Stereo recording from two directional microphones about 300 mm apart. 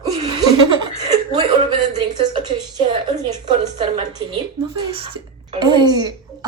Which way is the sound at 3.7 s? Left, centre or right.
Centre.